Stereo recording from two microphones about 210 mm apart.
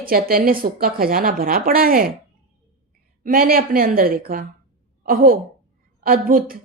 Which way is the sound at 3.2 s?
40° right (ahead or behind).